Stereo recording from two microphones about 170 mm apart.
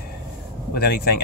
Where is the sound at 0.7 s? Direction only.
65° left (ahead or behind).